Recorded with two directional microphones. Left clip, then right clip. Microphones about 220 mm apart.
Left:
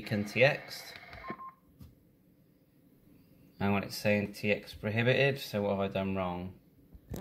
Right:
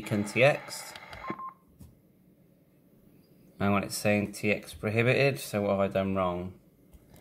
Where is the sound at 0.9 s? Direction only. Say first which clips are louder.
Right 4 dB; 45° right (ahead or behind).